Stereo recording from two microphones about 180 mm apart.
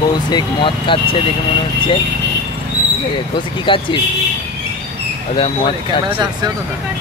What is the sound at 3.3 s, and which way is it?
Speech, 25° left (ahead or behind).